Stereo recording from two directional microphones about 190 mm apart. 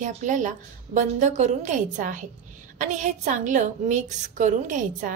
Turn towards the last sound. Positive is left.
turn(degrees=-40)  # may be behind; listen again after turning